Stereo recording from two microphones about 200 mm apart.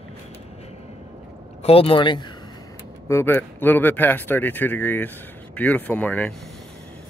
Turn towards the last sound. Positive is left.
turn(degrees=10)  # may be behind; listen again after turning